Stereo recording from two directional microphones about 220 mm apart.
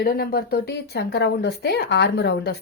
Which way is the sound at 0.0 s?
45° left (ahead or behind).